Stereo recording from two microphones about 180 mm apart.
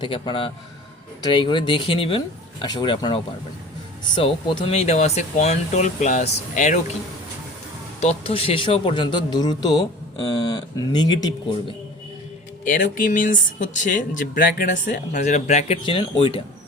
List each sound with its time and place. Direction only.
0.0 s speech: 30° left (ahead or behind)
4.2 s speech: 30° left (ahead or behind)
8.0 s speech: 30° left (ahead or behind)
12.6 s speech: 50° left (ahead or behind); by 16.4 s 30° left (ahead or behind)